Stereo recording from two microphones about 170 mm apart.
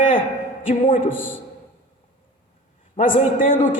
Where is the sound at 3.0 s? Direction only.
50° left (ahead or behind).